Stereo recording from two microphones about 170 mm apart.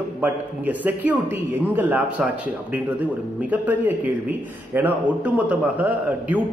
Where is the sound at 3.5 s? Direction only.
10° right (ahead or behind).